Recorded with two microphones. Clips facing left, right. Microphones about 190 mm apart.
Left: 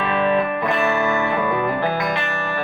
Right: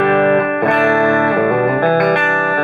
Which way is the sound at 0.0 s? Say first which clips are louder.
Right 7 dB; 60° right (ahead or behind).